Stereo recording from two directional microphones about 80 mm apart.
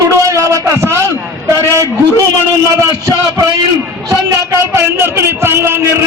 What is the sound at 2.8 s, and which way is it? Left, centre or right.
Speech, right.